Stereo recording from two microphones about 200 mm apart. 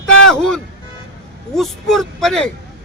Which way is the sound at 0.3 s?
5° left (ahead or behind).